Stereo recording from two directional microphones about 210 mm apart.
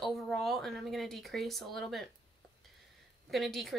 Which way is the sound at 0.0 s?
Centre (ahead or behind).